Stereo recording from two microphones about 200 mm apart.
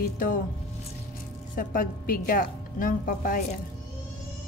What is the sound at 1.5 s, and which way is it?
A woman's voice, 45° left (ahead or behind).